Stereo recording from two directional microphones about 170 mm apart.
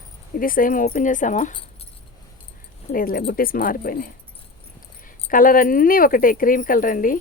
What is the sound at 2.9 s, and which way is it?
Speech, 55° left (ahead or behind).